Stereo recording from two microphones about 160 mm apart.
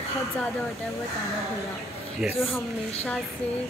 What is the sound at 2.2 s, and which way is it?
Speech, 5° right (ahead or behind).